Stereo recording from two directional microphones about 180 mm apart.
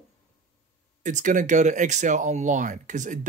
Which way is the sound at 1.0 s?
45° right (ahead or behind).